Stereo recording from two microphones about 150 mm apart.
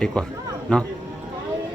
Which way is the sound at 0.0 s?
5° left (ahead or behind).